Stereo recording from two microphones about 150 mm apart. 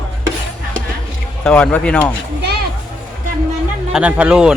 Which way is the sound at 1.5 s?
10° left (ahead or behind).